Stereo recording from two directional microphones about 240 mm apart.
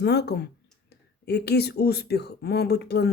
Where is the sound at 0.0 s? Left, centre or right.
Left.